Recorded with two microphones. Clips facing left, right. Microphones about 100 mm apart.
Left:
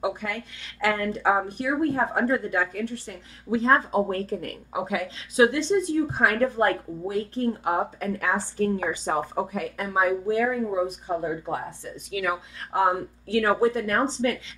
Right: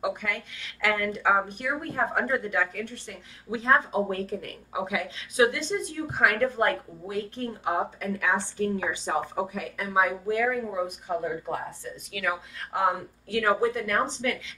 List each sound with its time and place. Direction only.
0.0 s a woman's voice: 35° left (ahead or behind)